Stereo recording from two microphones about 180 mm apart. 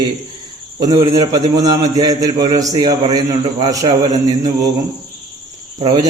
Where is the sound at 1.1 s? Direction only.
20° right (ahead or behind).